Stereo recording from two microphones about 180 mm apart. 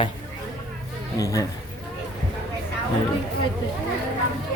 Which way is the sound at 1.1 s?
20° left (ahead or behind).